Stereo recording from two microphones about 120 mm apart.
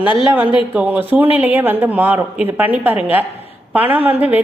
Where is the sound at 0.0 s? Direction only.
45° left (ahead or behind).